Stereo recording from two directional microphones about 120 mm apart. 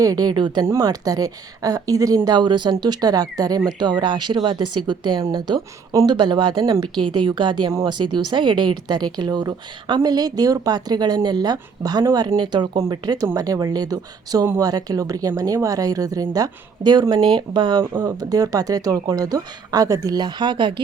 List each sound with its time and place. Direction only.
0.0 s a woman's voice: 30° right (ahead or behind)
7.7 s speech: 30° right (ahead or behind)
7.9 s a woman's voice: 40° right (ahead or behind)
18.2 s a woman's voice: 30° right (ahead or behind)